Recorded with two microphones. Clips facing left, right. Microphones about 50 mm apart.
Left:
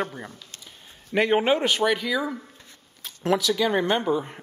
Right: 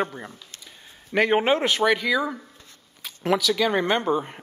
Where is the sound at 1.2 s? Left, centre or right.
Centre.